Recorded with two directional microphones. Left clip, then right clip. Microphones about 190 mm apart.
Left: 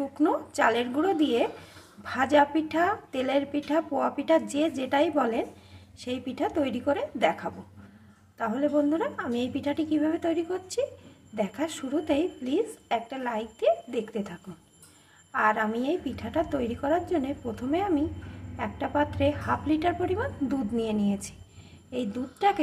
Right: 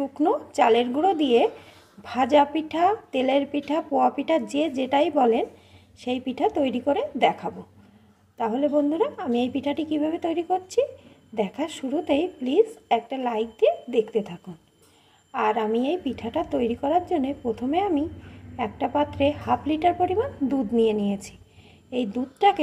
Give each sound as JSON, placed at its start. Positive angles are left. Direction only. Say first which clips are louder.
{"t": 0.2, "sound": "a woman's voice", "louder": "right 3 dB", "side_deg": -20}
{"t": 15.3, "sound": "a woman's voice", "louder": "right 2 dB", "side_deg": -20}